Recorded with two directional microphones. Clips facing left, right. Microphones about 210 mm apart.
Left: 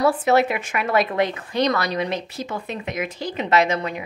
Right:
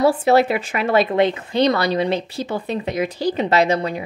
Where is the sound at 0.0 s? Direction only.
30° right (ahead or behind).